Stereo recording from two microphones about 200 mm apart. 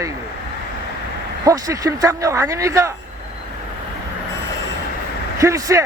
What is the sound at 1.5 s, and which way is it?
Speech, 15° right (ahead or behind).